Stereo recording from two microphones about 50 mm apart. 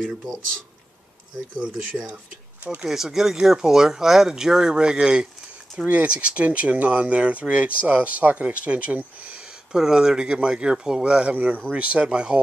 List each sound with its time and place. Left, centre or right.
0.0 s speech: centre
2.9 s speech: centre
5.9 s speech: right
9.7 s speech: centre
11.3 s speech: right